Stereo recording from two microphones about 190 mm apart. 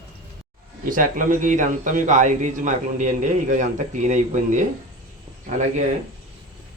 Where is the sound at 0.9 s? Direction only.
45° right (ahead or behind).